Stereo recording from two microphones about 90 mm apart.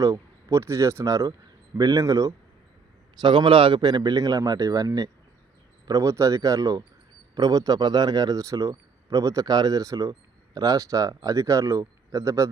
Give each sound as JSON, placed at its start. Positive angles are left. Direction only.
{"t": 0.0, "sound": "speech", "side_deg": -40}
{"t": 3.2, "sound": "a man's voice", "side_deg": -65}